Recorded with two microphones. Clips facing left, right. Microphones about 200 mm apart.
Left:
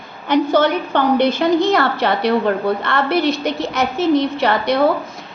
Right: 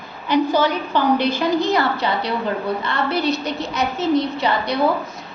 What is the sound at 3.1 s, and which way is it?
Speech, 25° left (ahead or behind).